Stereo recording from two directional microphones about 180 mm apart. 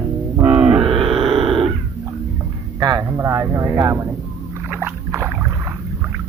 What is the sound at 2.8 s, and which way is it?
Speech, 20° right (ahead or behind).